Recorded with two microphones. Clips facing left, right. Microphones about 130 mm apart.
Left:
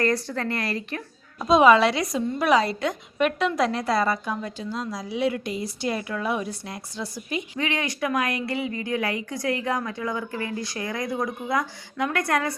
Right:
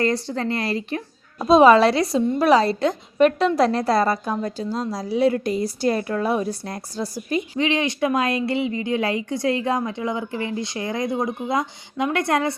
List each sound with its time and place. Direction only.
0.0 s a woman's voice: 25° right (ahead or behind)
7.6 s a woman's voice: 25° right (ahead or behind)